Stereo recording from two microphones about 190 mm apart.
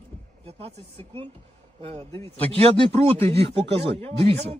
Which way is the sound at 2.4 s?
30° right (ahead or behind).